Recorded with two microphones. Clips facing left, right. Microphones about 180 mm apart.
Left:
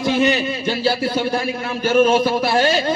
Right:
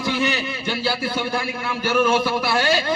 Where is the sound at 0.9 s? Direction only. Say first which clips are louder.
Left 5 dB; 45° left (ahead or behind).